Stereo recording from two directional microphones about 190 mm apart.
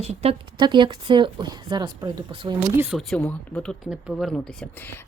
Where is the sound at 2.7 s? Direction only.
5° right (ahead or behind).